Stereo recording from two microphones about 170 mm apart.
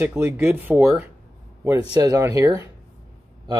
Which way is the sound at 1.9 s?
20° right (ahead or behind).